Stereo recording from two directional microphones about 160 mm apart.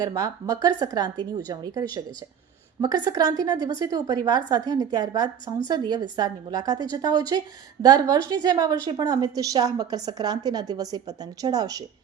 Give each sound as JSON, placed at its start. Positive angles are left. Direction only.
{"t": 0.0, "sound": "a woman's voice", "side_deg": -20}